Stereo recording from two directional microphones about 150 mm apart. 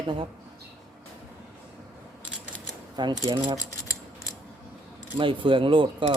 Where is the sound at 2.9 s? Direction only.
30° right (ahead or behind).